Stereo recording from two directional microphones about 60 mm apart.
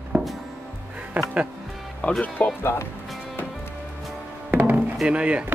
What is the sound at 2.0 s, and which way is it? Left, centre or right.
Speech, centre.